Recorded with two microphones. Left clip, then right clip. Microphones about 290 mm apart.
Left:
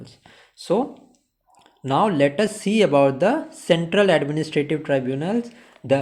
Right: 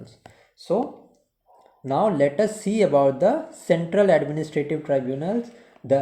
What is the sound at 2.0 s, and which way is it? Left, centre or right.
Speech, centre.